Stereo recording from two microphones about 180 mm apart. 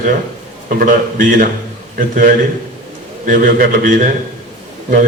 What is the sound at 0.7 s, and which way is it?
Speech, 50° right (ahead or behind).